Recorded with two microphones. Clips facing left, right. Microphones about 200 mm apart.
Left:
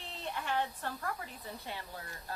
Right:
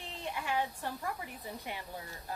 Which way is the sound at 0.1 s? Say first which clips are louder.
Right 1 dB; 15° right (ahead or behind).